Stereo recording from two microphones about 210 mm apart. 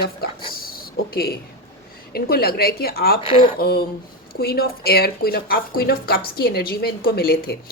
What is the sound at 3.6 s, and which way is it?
A woman's voice, 50° left (ahead or behind).